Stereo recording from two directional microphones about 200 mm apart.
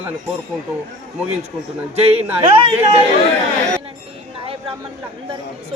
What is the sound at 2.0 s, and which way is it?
Speech, 30° right (ahead or behind).